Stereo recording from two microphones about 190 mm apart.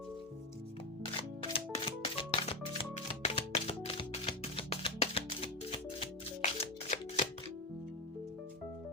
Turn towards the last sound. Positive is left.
turn(degrees=35)  # may be behind; listen again after turning